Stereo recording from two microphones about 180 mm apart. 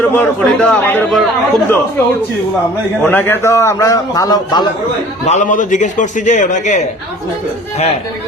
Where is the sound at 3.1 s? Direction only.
10° left (ahead or behind).